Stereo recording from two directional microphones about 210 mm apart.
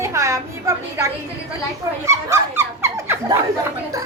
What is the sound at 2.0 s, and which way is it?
Dog, 15° right (ahead or behind).